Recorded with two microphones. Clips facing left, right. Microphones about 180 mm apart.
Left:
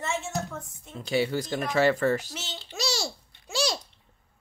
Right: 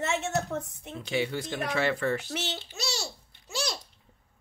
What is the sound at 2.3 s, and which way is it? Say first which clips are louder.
Speech: right 6 dB; 65° right (ahead or behind).